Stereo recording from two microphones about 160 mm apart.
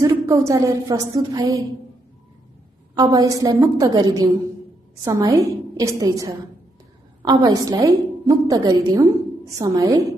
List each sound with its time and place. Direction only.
0.0 s a woman's voice: 20° right (ahead or behind)
2.9 s a woman's voice: 25° right (ahead or behind)